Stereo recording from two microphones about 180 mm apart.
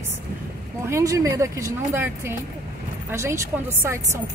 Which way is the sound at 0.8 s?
15° right (ahead or behind).